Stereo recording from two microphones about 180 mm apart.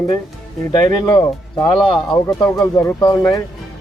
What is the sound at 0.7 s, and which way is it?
Speech, 25° left (ahead or behind).